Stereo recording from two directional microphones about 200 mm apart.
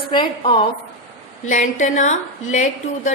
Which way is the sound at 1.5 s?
40° left (ahead or behind).